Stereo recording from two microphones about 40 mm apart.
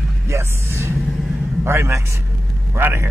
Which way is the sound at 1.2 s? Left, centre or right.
Centre.